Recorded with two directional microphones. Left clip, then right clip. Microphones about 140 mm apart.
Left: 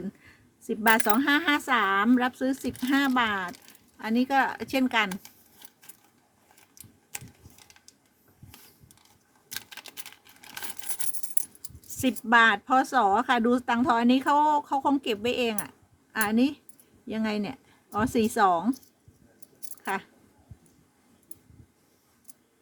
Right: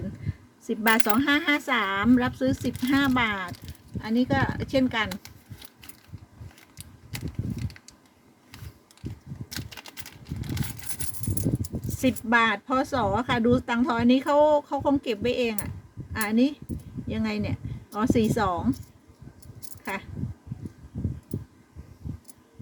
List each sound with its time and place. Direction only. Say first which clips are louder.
0.7 s speech: even; 25° left (ahead or behind)
4.0 s speech: left 1 dB; 45° left (ahead or behind)
11.9 s speech: left 1 dB; 35° left (ahead or behind)
19.8 s speech: left 2 dB; 30° left (ahead or behind)